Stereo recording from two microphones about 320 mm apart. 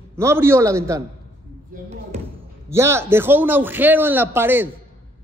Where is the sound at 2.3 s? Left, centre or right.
Centre.